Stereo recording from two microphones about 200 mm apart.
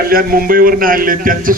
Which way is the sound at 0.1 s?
45° right (ahead or behind).